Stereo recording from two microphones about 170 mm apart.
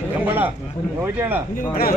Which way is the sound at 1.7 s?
60° left (ahead or behind).